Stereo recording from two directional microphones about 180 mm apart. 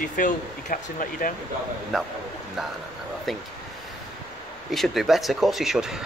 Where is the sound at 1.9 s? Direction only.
Centre (ahead or behind).